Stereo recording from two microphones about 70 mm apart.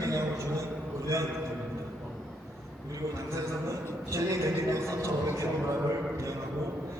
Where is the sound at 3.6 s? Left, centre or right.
Right.